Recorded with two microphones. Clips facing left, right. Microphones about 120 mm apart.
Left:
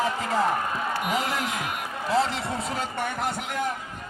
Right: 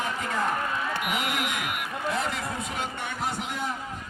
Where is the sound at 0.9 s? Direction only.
35° left (ahead or behind).